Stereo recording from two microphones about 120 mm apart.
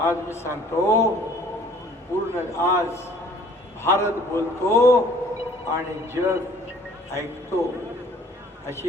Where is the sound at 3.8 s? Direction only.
20° left (ahead or behind).